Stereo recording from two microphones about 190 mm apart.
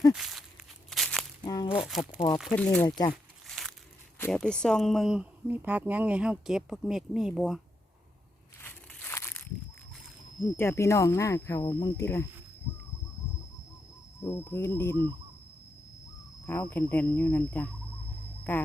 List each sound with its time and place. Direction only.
0.1 s walk: centre (ahead or behind)
0.9 s a sound: centre (ahead or behind)
1.5 s crumpling: 20° left (ahead or behind)
1.7 s speech: centre (ahead or behind)
3.1 s a sound: centre (ahead or behind)
4.2 s speech: 5° left (ahead or behind)
8.6 s a sound: 10° left (ahead or behind)
10.6 s speech: 15° left (ahead or behind)
14.3 s speech: 15° left (ahead or behind)
16.5 s speech: 10° left (ahead or behind)